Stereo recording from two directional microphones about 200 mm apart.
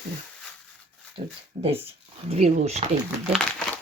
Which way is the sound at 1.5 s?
35° right (ahead or behind).